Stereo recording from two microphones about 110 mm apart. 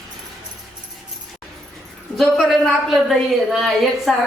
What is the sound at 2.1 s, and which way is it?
A woman's voice, centre (ahead or behind).